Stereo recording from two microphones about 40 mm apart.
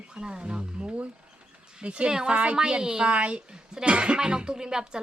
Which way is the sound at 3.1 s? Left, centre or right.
Right.